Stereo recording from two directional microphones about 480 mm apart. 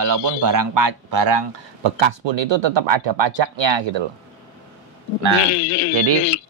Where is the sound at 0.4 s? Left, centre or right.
Right.